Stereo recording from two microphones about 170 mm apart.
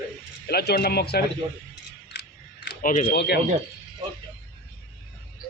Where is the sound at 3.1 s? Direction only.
80° left.